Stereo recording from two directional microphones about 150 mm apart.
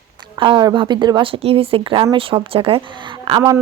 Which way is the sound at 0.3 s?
35° right (ahead or behind).